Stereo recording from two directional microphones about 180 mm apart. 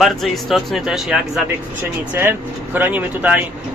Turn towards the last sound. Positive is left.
turn(degrees=-10)  # may be behind; listen again after turning